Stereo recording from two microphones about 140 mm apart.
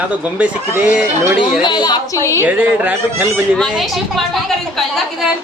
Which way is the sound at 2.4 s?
10° right (ahead or behind).